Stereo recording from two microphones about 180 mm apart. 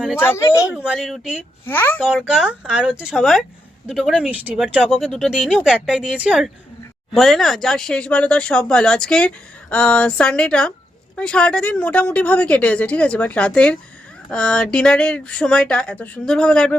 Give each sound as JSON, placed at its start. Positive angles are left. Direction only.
{"t": 0.2, "sound": "a woman's voice", "side_deg": 15}
{"t": 0.7, "sound": "speech", "side_deg": -5}
{"t": 1.6, "sound": "a woman's voice", "side_deg": 10}
{"t": 2.0, "sound": "a woman's voice", "side_deg": -5}